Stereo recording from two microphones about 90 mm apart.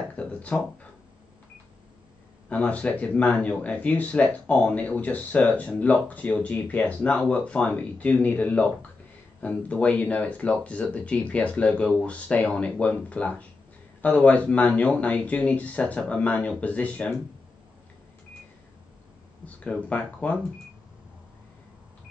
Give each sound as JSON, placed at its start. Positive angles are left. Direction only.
{"t": 0.1, "sound": "a sound", "side_deg": 15}
{"t": 2.5, "sound": "speech", "side_deg": 15}
{"t": 19.4, "sound": "speech", "side_deg": 15}